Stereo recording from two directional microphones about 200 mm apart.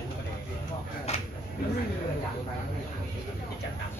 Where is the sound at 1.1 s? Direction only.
30° left (ahead or behind).